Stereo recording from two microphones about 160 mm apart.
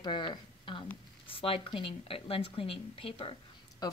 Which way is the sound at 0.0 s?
30° left (ahead or behind).